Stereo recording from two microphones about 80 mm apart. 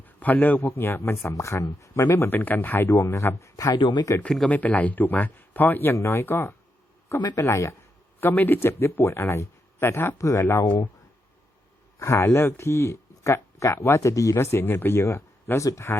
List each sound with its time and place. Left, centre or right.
0.0 s speech: left
2.9 s speech: left
3.8 s speech: left
4.4 s speech: centre
10.2 s speech: left
10.4 s speech: left
11.9 s speech: left